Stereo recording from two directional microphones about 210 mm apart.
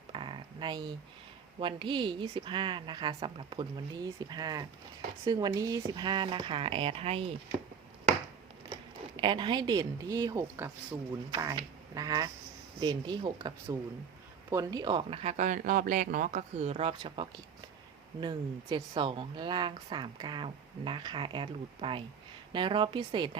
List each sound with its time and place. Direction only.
0.1 s a sound: 20° right (ahead or behind)
1.5 s speech: 25° right (ahead or behind)
9.1 s speech: 20° right (ahead or behind)
14.5 s speech: 15° right (ahead or behind)